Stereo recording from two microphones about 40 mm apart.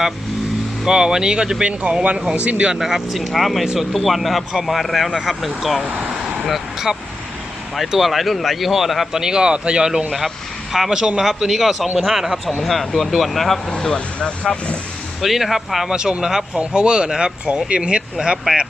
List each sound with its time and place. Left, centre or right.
0.9 s speech: centre; by 2.7 s right
2.7 s speech: centre
7.9 s speech: centre
9.1 s speech: centre
10.2 s speech: centre
10.9 s speech: right
11.4 s speech: centre
13.7 s speech: left
15.2 s speech: centre
15.9 s speech: right